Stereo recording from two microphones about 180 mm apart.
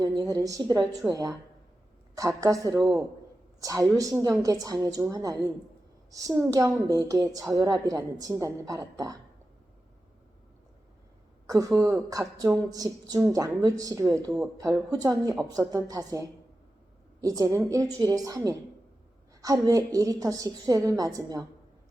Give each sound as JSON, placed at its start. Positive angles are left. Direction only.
{"t": 0.0, "sound": "a woman's voice", "side_deg": -20}
{"t": 11.4, "sound": "a woman's voice", "side_deg": -20}